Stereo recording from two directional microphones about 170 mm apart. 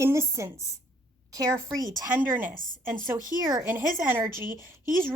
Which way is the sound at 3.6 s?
10° right (ahead or behind).